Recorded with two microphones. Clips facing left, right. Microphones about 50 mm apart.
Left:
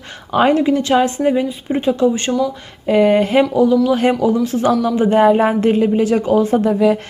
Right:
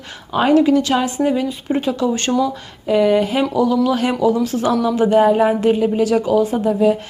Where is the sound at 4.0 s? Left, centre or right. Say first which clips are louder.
Left 2 dB; left.